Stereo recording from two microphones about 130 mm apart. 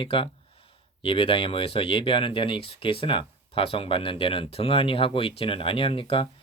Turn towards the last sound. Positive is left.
turn(degrees=45)  # may be behind; listen again after turning